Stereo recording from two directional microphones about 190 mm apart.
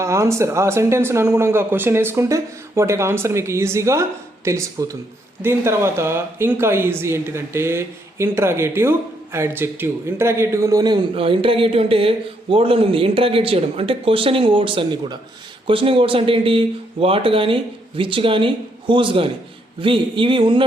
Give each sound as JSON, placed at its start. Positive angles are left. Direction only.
{"t": 0.0, "sound": "speech", "side_deg": -15}